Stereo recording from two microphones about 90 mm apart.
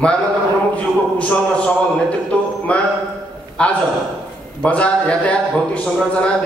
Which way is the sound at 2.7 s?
15° left (ahead or behind).